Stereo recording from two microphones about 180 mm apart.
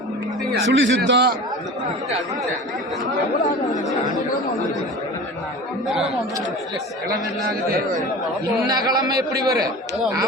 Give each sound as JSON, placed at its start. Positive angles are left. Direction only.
{"t": 0.7, "sound": "a man's voice", "side_deg": -90}
{"t": 8.6, "sound": "a man's voice", "side_deg": -20}